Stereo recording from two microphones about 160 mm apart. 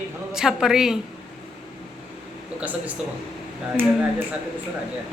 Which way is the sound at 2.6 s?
10° right (ahead or behind).